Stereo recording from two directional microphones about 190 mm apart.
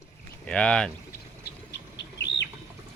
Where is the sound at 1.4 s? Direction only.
65° left (ahead or behind).